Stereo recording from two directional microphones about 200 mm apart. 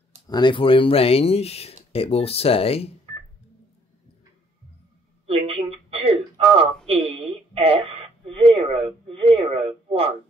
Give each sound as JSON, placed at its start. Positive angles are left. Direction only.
{"t": 0.3, "sound": "speech", "side_deg": 25}
{"t": 5.2, "sound": "a sound", "side_deg": -30}
{"t": 6.9, "sound": "a woman's voice", "side_deg": -30}